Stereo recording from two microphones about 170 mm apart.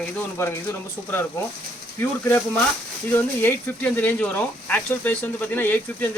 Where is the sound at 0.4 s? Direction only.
15° left (ahead or behind).